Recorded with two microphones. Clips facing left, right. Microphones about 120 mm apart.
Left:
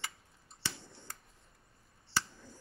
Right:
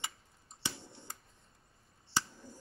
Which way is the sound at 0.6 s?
20° right (ahead or behind).